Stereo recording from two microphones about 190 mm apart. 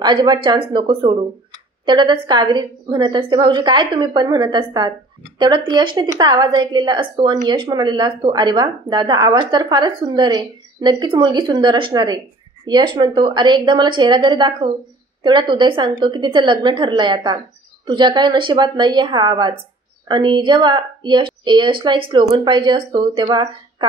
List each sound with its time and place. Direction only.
0.0 s a woman's voice: 25° right (ahead or behind)